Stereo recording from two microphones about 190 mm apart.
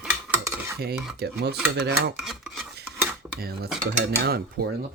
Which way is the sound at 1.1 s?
60° right (ahead or behind).